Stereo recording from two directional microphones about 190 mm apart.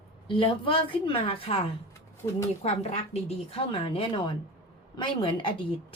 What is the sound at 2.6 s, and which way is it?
Speech, 35° left (ahead or behind).